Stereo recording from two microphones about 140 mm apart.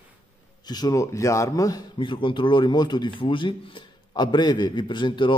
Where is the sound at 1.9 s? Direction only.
35° left (ahead or behind).